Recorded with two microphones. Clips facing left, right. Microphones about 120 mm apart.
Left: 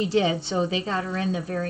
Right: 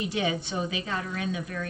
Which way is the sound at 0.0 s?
30° left (ahead or behind).